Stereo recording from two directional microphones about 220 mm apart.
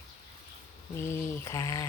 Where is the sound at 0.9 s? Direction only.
10° left (ahead or behind).